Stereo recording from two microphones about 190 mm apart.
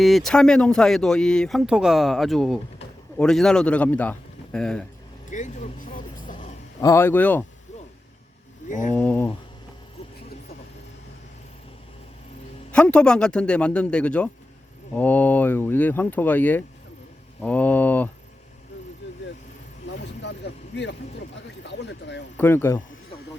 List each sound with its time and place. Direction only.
0.0 s a man's voice: centre (ahead or behind)
5.3 s vehicle: 40° left (ahead or behind)
6.8 s speech: 15° left (ahead or behind)
8.9 s speech: 10° left (ahead or behind)
12.7 s speech: 5° left (ahead or behind)
20.2 s vehicle: 65° left (ahead or behind)
21.6 s a sound: 65° left (ahead or behind)
22.4 s speech: 10° left (ahead or behind)